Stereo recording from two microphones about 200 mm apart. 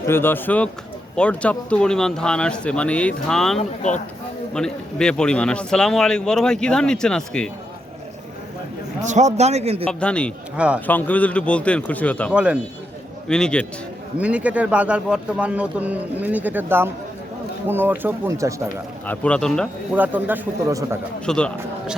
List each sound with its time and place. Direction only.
0.1 s a man's voice: 10° left (ahead or behind)
3.6 s speech: 35° left (ahead or behind)
4.5 s a man's voice: 5° left (ahead or behind)
9.0 s speech: 35° right (ahead or behind)
9.8 s a man's voice: 5° left (ahead or behind)
12.3 s a man's voice: 5° right (ahead or behind)
14.2 s speech: 5° right (ahead or behind)
19.0 s a man's voice: 5° left (ahead or behind)
20.0 s speech: 10° right (ahead or behind)
21.2 s a man's voice: 5° left (ahead or behind)